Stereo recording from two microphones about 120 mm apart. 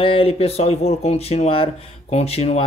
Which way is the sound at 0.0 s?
50° left (ahead or behind).